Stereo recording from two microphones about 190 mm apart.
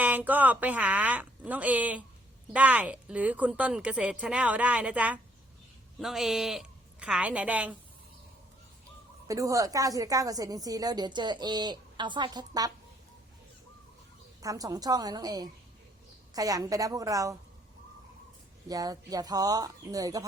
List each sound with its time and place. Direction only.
0.0 s a woman's voice: 10° right (ahead or behind)
9.2 s a woman's voice: 15° right (ahead or behind)
14.4 s a woman's voice: 20° right (ahead or behind)
18.7 s a woman's voice: 20° right (ahead or behind)